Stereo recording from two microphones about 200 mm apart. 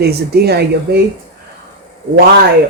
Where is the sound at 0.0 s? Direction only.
50° right (ahead or behind).